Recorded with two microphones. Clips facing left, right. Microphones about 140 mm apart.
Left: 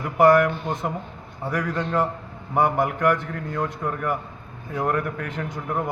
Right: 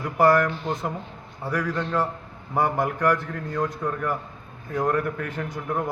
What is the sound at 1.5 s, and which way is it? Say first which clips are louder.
Speech: even; 5° left (ahead or behind).